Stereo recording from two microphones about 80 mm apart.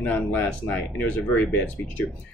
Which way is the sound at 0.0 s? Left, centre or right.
Left.